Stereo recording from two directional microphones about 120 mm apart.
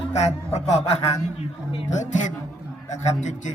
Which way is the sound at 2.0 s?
85° left.